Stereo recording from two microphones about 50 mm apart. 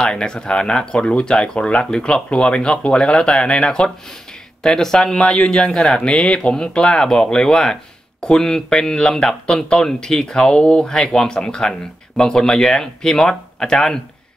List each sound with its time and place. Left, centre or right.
0.0 s speech: centre